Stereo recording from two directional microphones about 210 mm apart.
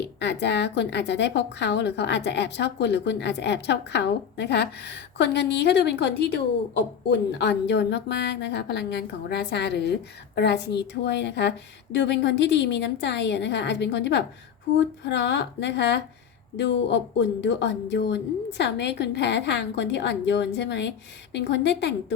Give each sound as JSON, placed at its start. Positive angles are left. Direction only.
{"t": 0.0, "sound": "a woman's voice", "side_deg": 55}